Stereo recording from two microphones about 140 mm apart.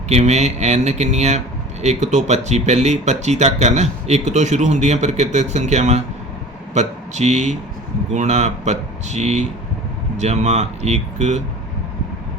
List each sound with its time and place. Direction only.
0.1 s speech: 50° right (ahead or behind)